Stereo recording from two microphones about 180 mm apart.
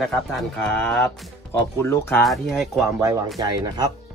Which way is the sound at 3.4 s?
25° right (ahead or behind).